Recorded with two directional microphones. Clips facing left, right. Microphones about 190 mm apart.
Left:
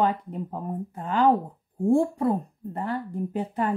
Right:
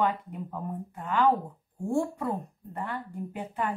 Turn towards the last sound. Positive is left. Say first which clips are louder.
# left 6 dB
turn(degrees=35)  # may be behind; listen again after turning